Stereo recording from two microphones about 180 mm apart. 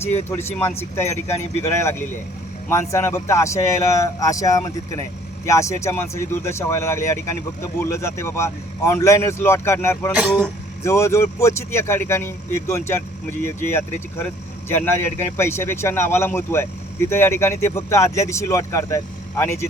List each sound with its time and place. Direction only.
0.3 s speech: 10° left (ahead or behind)